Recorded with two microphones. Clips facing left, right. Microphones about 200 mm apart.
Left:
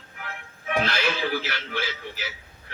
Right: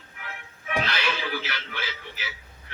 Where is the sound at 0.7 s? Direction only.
45° left (ahead or behind).